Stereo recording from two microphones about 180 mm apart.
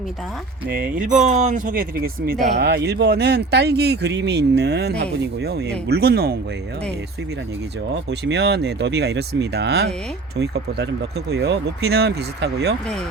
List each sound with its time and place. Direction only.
0.7 s speech: 50° right (ahead or behind)
2.6 s speech: 65° right (ahead or behind)
7.9 s speech: 70° right (ahead or behind)